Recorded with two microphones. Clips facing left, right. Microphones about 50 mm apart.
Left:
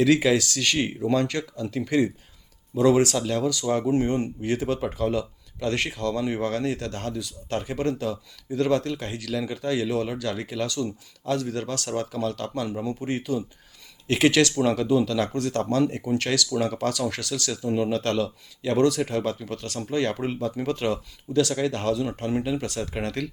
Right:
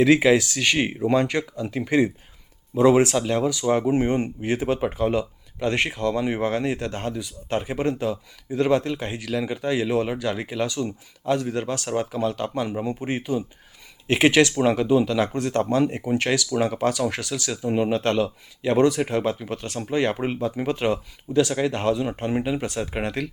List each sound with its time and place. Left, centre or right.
0.0 s speech: right